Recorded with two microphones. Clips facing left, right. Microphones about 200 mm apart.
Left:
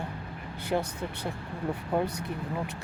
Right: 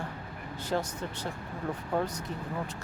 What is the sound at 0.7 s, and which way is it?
Speech, 60° left (ahead or behind).